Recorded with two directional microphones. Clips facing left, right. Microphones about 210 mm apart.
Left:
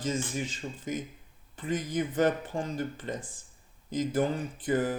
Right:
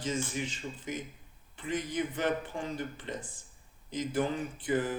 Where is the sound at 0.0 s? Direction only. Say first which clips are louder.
Left 2 dB; 45° left (ahead or behind).